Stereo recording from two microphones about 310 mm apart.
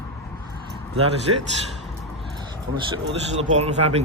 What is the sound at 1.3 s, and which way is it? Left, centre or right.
Speech, right.